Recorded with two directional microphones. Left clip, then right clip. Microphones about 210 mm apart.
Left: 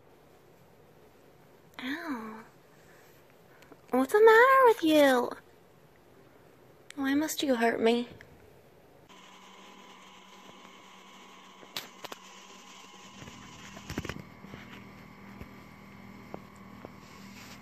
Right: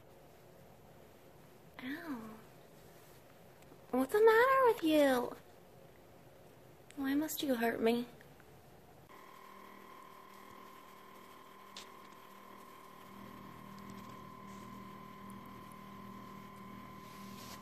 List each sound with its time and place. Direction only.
1.8 s a sound: 45° left (ahead or behind)
3.9 s speech: 45° left (ahead or behind)
6.9 s a woman's voice: 40° left (ahead or behind)